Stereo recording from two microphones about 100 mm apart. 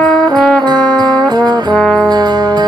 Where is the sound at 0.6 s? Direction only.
45° right (ahead or behind).